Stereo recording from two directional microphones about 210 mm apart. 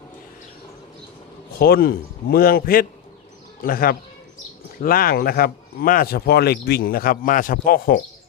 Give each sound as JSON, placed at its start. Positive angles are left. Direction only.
{"t": 1.5, "sound": "speech", "side_deg": 45}